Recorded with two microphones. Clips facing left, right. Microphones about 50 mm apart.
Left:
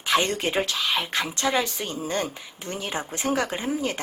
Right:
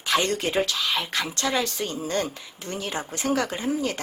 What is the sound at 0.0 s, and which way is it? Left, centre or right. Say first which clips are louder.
Speech: left 1 dB; left.